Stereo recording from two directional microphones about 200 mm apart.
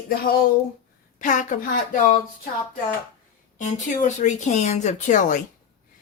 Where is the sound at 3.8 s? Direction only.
40° left (ahead or behind).